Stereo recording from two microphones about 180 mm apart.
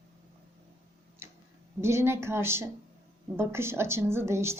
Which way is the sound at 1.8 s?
15° right (ahead or behind).